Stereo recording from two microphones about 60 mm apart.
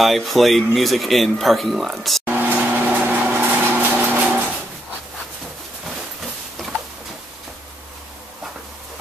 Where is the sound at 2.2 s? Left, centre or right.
Right.